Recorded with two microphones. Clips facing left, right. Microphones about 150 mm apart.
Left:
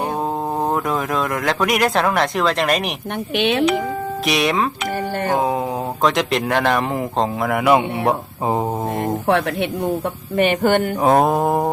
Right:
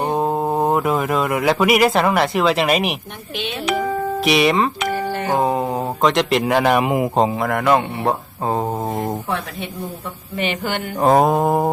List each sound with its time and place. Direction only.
0.1 s speech: 10° right (ahead or behind)
3.3 s speech: 80° left
4.3 s mantra: centre (ahead or behind)
6.0 s speech: centre (ahead or behind)
7.4 s speech: 5° left (ahead or behind)
9.0 s speech: 65° left (ahead or behind)
10.3 s speech: 50° left (ahead or behind)
11.0 s mantra: centre (ahead or behind)